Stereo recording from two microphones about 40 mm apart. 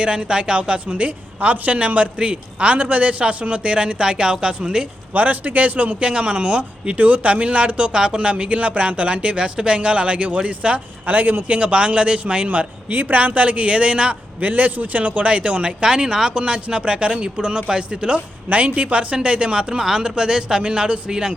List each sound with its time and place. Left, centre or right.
0.0 s speech: right
2.7 s speech: right
5.1 s speech: right
6.1 s speech: right
11.0 s speech: right
12.5 s speech: right
14.4 s speech: right
18.4 s speech: right; by 21.3 s centre